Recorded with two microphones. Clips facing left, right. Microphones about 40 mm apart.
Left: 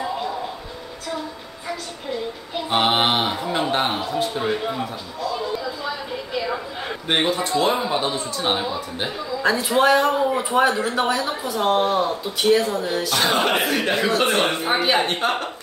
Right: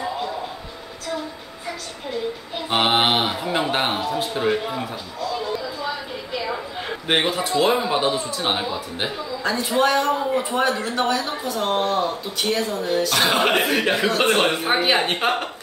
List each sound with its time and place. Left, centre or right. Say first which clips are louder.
2.7 s speech: even; centre
3.9 s speech: even; centre
7.1 s a man's voice: even; centre
9.4 s a man's voice: left 2 dB; centre
13.1 s a man's voice: even; centre